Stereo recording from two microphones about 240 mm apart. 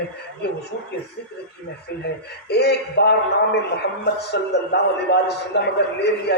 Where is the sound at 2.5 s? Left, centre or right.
Left.